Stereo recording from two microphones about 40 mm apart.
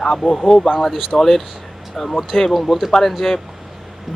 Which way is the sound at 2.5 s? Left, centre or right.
Centre.